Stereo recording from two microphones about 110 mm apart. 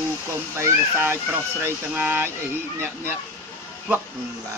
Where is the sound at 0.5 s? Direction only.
20° right (ahead or behind).